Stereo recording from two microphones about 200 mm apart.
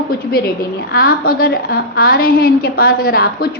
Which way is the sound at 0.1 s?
50° left (ahead or behind).